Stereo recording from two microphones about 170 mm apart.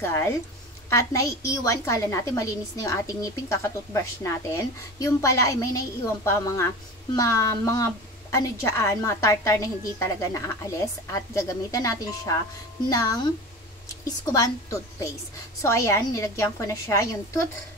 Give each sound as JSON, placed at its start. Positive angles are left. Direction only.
{"t": 0.0, "sound": "a woman's voice", "side_deg": 15}